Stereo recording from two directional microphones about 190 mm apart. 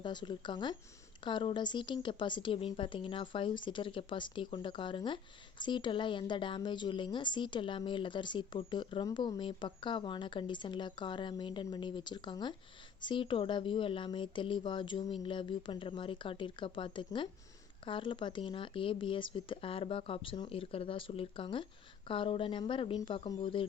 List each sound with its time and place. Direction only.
0.0 s a woman's voice: 25° left (ahead or behind)